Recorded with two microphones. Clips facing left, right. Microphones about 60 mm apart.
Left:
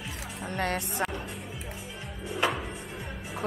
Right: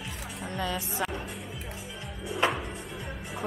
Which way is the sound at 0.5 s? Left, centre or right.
Left.